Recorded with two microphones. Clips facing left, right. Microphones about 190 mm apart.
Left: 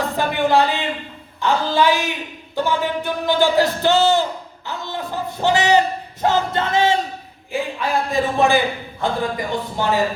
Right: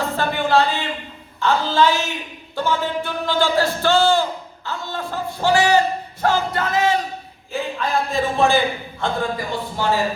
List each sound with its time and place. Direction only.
0.2 s a sound: 15° left (ahead or behind)
1.4 s speech: 15° left (ahead or behind)
7.5 s speech: 15° left (ahead or behind)